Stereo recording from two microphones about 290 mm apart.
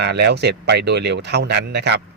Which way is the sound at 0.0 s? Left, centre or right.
Right.